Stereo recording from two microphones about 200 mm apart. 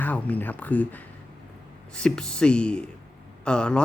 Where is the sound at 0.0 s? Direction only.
10° left (ahead or behind).